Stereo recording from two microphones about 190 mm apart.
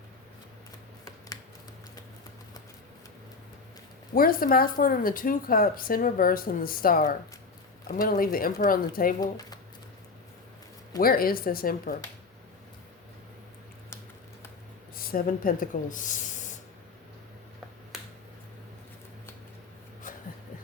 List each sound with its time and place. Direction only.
4.1 s speech: 50° left (ahead or behind)
9.2 s speech: 20° left (ahead or behind)
11.0 s speech: 50° left (ahead or behind)
14.9 s speech: 50° left (ahead or behind)
20.1 s a sound: 45° left (ahead or behind)